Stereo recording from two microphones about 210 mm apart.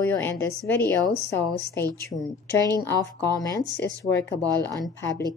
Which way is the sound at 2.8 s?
10° left (ahead or behind).